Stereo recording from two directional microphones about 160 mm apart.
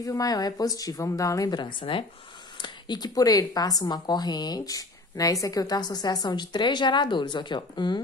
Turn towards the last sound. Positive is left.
turn(degrees=30)  # may be behind; listen again after turning